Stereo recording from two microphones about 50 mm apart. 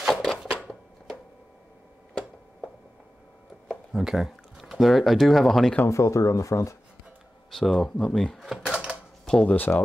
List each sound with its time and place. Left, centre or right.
0.1 s chopping: centre
3.6 s speech: centre
5.9 s speech: left
7.5 s speech: centre
8.4 s drawer open or close: centre
9.2 s speech: centre